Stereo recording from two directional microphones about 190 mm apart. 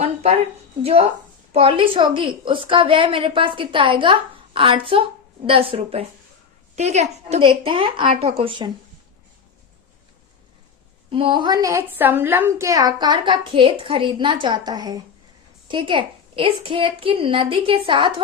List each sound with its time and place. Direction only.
0.0 s a woman's voice: 35° right (ahead or behind)
11.1 s a woman's voice: 25° right (ahead or behind)